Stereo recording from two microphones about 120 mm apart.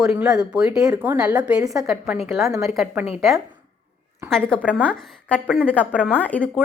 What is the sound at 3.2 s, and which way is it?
A woman's voice, centre (ahead or behind).